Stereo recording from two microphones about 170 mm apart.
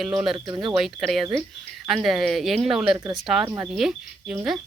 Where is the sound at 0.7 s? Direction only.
Centre (ahead or behind).